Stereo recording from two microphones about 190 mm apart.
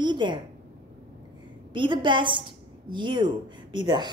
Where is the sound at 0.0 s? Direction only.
25° right (ahead or behind).